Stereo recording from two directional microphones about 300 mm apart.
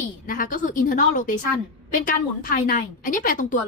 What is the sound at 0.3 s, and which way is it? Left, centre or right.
A woman's voice, left.